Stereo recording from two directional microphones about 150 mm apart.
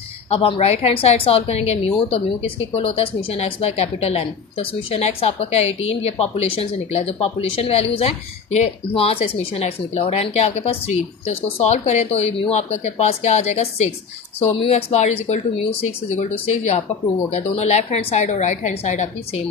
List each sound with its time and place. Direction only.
0.3 s a woman's voice: 40° left (ahead or behind)